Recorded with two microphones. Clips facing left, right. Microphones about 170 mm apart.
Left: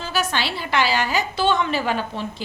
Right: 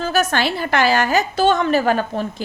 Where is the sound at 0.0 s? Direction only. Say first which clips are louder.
Right 6 dB; 45° right (ahead or behind).